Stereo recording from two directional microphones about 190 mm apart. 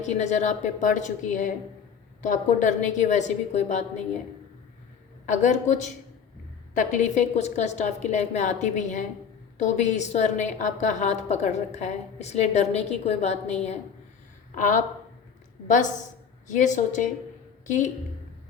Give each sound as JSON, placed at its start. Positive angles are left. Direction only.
{"t": 0.0, "sound": "a woman's voice", "side_deg": 40}
{"t": 5.2, "sound": "a woman's voice", "side_deg": 40}